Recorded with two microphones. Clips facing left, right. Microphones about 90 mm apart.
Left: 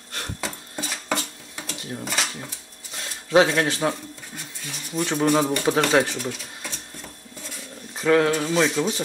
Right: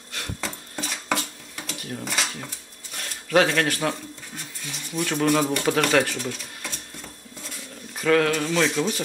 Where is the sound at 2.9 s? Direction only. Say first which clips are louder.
Left 2 dB; 20° left (ahead or behind).